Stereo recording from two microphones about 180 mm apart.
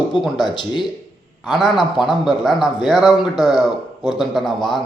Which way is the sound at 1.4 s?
Centre (ahead or behind).